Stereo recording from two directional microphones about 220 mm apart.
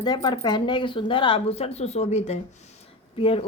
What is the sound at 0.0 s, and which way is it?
Speech, 20° left (ahead or behind).